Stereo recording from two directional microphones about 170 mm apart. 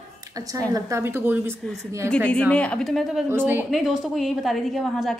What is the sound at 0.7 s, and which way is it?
Speech, 15° right (ahead or behind).